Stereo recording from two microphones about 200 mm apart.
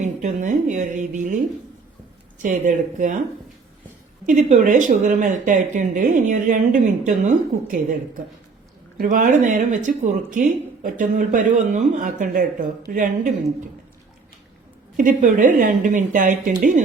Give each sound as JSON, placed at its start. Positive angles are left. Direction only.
{"t": 0.0, "sound": "speech", "side_deg": -40}
{"t": 2.4, "sound": "speech", "side_deg": -40}
{"t": 4.3, "sound": "speech", "side_deg": -35}
{"t": 14.9, "sound": "speech", "side_deg": -40}